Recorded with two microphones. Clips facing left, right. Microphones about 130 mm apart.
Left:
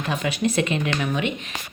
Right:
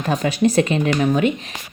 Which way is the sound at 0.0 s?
40° right (ahead or behind).